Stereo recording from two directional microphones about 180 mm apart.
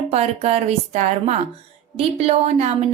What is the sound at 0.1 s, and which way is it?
A woman's voice, 35° right (ahead or behind).